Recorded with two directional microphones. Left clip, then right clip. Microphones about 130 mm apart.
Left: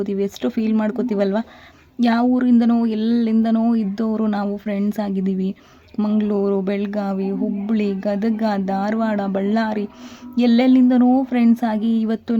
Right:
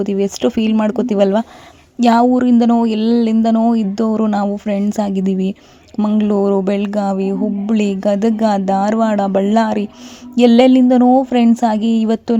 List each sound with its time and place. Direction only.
0.0 s a woman's voice: 40° right (ahead or behind)